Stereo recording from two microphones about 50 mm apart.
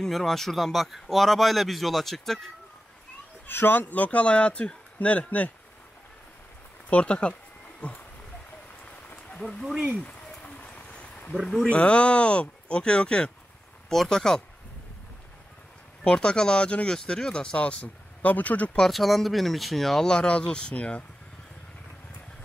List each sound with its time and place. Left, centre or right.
0.0 s a man's voice: centre
3.4 s speech: left
3.9 s speech: left
6.9 s speech: left
10.4 s a sound: left
11.6 s speech: left
16.0 s speech: centre; by 18.7 s left
18.8 s a man's voice: centre
20.1 s speech: centre